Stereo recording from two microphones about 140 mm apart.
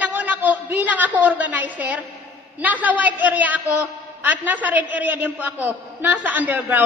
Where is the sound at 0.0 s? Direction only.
10° right (ahead or behind).